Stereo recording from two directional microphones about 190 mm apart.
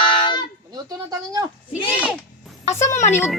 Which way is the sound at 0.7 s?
20° right (ahead or behind).